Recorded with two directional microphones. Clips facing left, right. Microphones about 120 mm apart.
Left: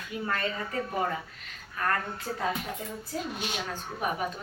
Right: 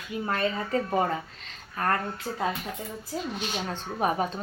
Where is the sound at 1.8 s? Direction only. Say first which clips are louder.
Right 3 dB; 35° right (ahead or behind).